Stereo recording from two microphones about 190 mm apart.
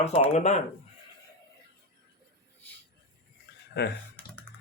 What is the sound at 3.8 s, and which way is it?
Speech, 65° left (ahead or behind).